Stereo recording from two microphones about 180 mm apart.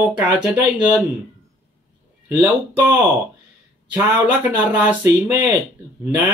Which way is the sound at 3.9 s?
10° right (ahead or behind).